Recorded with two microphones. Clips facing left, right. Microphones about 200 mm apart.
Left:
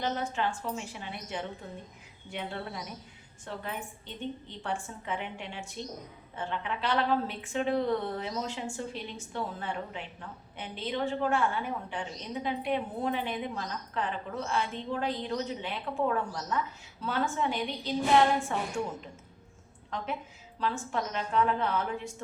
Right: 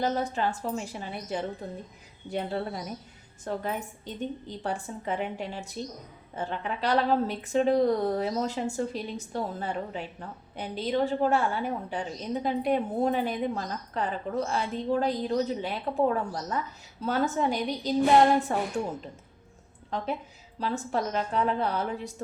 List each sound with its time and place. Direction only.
0.0 s a woman's voice: 40° right (ahead or behind)
19.9 s a woman's voice: 35° right (ahead or behind)